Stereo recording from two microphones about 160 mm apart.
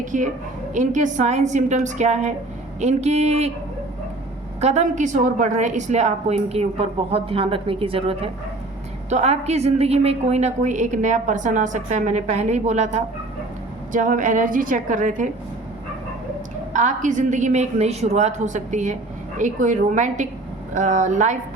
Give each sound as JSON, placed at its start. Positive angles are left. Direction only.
{"t": 0.0, "sound": "a woman's voice", "side_deg": -50}
{"t": 4.6, "sound": "a woman's voice", "side_deg": -45}
{"t": 16.7, "sound": "a woman's voice", "side_deg": -50}